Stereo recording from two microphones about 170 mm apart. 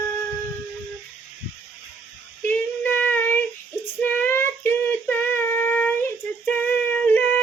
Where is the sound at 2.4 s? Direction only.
10° left (ahead or behind).